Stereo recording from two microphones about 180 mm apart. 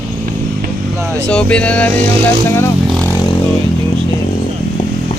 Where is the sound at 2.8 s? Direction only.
5° left (ahead or behind).